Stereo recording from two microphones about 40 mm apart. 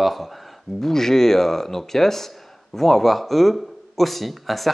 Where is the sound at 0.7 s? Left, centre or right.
Centre.